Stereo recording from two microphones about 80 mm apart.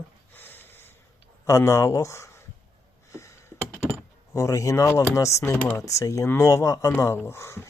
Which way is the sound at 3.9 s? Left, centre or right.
Left.